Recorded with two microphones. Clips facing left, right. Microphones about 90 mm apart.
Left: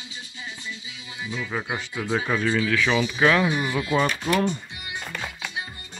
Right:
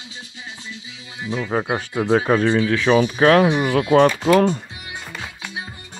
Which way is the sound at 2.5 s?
30° right (ahead or behind).